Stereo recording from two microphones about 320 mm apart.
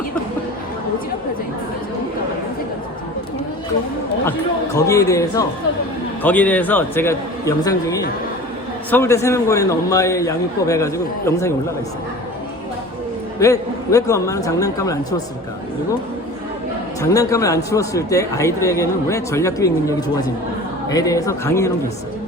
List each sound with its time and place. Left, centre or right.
4.3 s a man's voice: centre
13.4 s a man's voice: centre
17.0 s a man's voice: centre